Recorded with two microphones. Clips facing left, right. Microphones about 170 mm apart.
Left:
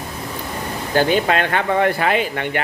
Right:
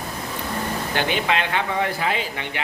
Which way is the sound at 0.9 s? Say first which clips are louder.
Left 7 dB; 40° left (ahead or behind).